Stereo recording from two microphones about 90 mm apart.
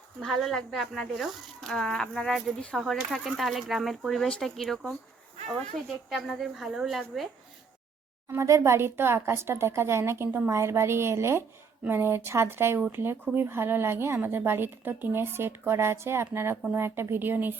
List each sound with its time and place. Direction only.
0.2 s speech: centre (ahead or behind)
6.1 s speech: centre (ahead or behind)
8.3 s a woman's voice: 35° right (ahead or behind)